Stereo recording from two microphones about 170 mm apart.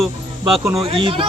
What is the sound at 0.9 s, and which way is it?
Speech, 30° right (ahead or behind).